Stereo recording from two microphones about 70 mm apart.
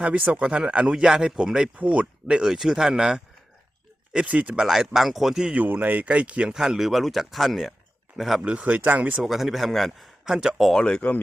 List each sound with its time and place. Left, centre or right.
0.0 s speech: centre
4.6 s speech: centre
5.5 s speech: right; by 7.7 s centre
8.4 s speech: centre
9.2 s speech: centre
10.7 s speech: centre